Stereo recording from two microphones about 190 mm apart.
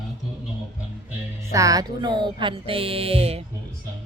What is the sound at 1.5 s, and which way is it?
Speech, 20° right (ahead or behind).